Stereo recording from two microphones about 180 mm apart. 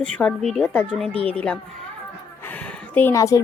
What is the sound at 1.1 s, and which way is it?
Speech, 30° right (ahead or behind).